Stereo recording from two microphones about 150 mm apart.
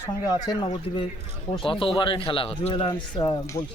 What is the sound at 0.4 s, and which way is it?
A man's voice, 30° left (ahead or behind).